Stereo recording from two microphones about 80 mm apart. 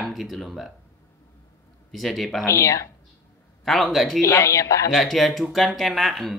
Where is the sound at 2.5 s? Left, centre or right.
Left.